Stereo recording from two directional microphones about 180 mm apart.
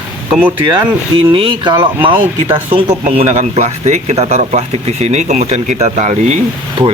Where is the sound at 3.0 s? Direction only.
40° right (ahead or behind).